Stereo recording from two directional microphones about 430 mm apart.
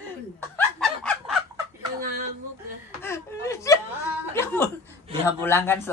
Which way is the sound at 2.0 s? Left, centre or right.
Centre.